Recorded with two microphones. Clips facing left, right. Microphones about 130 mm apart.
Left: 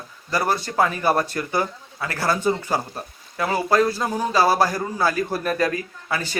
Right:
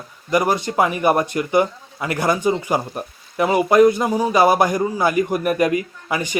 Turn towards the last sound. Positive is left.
turn(degrees=-15)  # may be behind; listen again after turning